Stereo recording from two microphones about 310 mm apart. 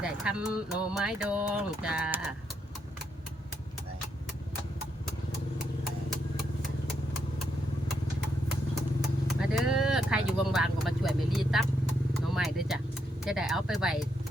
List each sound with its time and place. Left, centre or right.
0.0 s speech: centre
9.4 s vehicle: centre
12.2 s speech: centre